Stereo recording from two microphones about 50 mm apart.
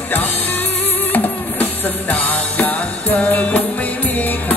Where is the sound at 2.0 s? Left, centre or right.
Left.